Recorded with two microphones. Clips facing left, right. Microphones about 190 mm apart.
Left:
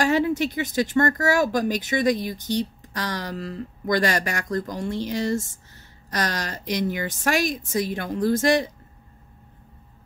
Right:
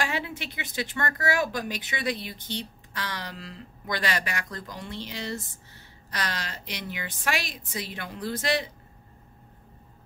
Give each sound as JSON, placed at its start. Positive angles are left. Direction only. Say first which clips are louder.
{"t": 0.0, "sound": "speech", "louder": "left 11 dB", "side_deg": 40}